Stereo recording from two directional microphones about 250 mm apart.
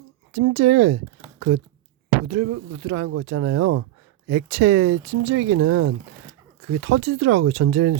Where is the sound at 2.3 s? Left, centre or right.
Right.